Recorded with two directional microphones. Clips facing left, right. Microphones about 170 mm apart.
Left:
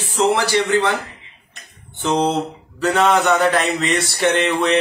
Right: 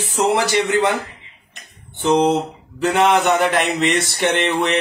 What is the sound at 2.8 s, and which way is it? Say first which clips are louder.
Mantra: even; 15° right (ahead or behind).